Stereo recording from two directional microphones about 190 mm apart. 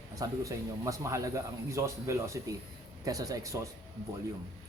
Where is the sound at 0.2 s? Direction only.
20° right (ahead or behind).